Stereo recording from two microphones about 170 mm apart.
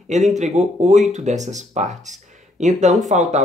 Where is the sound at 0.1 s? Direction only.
45° right (ahead or behind).